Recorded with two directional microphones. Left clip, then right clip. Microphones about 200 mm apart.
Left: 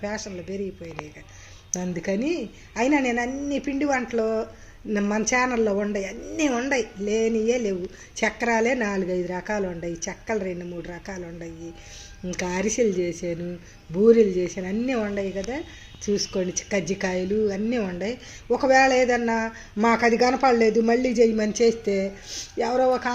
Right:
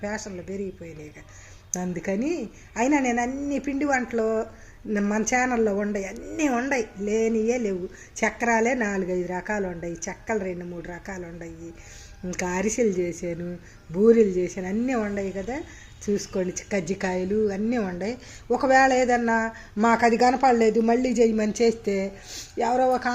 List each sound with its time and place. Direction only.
0.0 s a woman's voice: 5° right (ahead or behind)
1.7 s a woman's voice: 5° right (ahead or behind)